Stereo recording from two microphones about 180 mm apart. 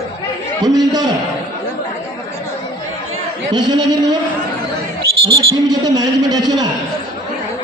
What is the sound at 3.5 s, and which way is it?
Speech, 25° right (ahead or behind).